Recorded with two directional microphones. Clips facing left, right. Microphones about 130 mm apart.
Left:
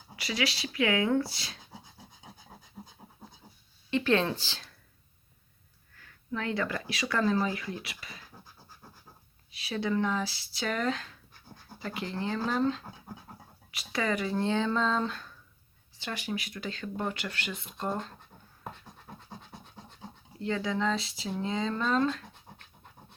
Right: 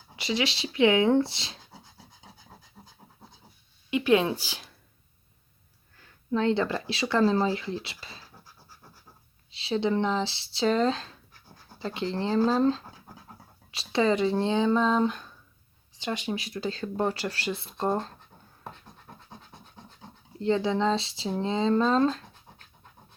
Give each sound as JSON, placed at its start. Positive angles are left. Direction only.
{"t": 0.2, "sound": "speech", "side_deg": -25}
{"t": 2.8, "sound": "scratch", "side_deg": 20}
{"t": 3.8, "sound": "speech", "side_deg": -10}
{"t": 6.0, "sound": "speech", "side_deg": -25}
{"t": 9.5, "sound": "speech", "side_deg": -25}
{"t": 18.6, "sound": "scratch", "side_deg": 5}
{"t": 20.4, "sound": "speech", "side_deg": -30}